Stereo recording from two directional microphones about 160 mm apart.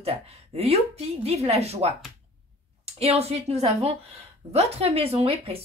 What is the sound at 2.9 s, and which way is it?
Speech, 40° right (ahead or behind).